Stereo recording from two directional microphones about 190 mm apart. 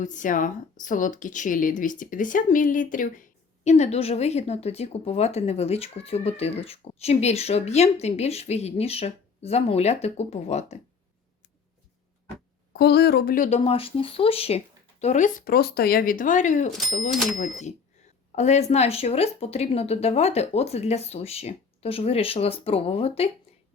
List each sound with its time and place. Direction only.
0.0 s speech: 40° left (ahead or behind)
12.7 s speech: 55° left (ahead or behind)
13.6 s speech: 30° left (ahead or behind)
18.3 s speech: 35° left (ahead or behind)